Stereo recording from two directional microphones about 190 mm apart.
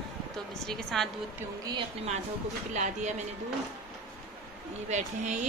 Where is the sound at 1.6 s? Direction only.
20° right (ahead or behind).